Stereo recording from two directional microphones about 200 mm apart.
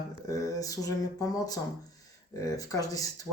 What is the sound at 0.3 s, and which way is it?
Speech, 15° left (ahead or behind).